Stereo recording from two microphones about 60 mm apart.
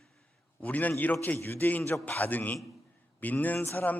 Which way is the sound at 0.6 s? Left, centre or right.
Left.